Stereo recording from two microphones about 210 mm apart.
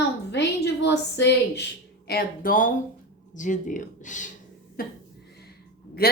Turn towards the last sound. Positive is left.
turn(degrees=45)  # may be behind; listen again after turning